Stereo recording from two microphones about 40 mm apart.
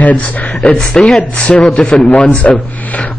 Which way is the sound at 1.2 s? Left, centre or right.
Left.